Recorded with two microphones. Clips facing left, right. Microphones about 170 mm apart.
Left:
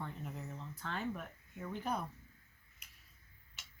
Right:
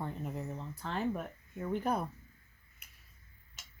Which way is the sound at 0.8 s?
35° right (ahead or behind).